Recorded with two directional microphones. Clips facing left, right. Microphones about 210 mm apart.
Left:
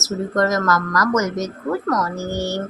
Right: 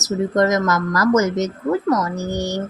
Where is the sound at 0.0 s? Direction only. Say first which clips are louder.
Right 2 dB; 20° right (ahead or behind).